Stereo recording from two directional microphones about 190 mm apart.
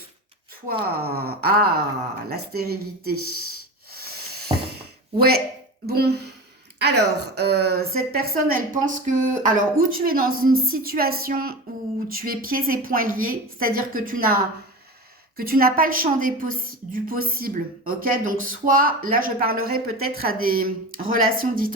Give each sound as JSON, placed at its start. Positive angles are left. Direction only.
{"t": 0.9, "sound": "a woman's voice", "side_deg": -55}
{"t": 3.9, "sound": "a sound", "side_deg": -55}
{"t": 5.8, "sound": "a woman's voice", "side_deg": -55}